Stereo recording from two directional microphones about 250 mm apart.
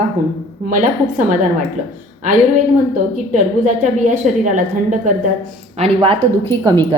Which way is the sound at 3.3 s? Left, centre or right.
Right.